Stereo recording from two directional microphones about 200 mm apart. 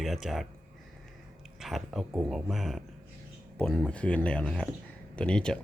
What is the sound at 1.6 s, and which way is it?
Speech, centre (ahead or behind).